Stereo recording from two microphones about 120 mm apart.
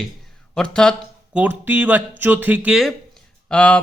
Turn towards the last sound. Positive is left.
turn(degrees=10)  # may be behind; listen again after turning